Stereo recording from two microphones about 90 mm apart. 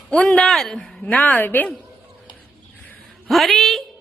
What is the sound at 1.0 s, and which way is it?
Speech, 15° left (ahead or behind).